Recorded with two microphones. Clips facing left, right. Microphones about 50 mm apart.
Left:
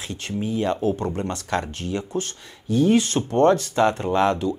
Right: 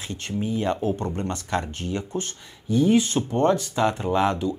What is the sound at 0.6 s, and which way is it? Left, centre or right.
Speech, right.